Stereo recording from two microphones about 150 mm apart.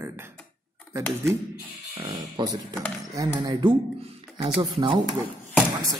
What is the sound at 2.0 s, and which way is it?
Speech, 30° right (ahead or behind).